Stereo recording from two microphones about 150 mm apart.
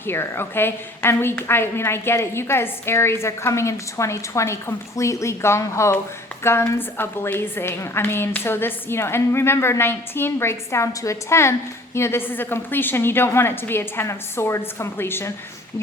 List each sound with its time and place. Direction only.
0.0 s a woman's voice: 15° left (ahead or behind)